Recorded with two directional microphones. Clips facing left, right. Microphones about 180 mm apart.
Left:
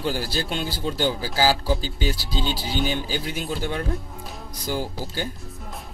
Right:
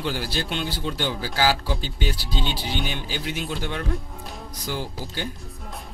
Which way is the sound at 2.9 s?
40° left (ahead or behind).